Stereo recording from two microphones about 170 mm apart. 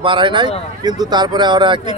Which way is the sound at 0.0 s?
30° right (ahead or behind).